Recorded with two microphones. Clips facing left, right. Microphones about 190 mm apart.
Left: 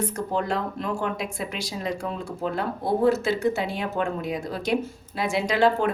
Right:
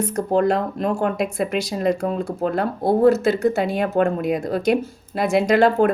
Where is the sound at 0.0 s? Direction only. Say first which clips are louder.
Right 8 dB; 40° right (ahead or behind).